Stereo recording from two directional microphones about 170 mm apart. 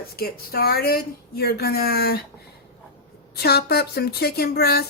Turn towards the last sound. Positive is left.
turn(degrees=70)  # may be behind; listen again after turning